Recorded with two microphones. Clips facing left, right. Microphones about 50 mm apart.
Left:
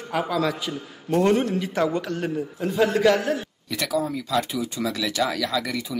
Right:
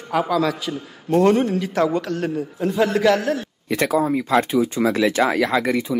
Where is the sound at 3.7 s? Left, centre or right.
Right.